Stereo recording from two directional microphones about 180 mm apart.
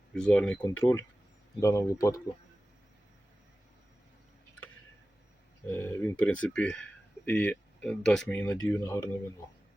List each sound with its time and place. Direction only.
0.1 s speech: 5° left (ahead or behind)
5.6 s speech: 10° left (ahead or behind)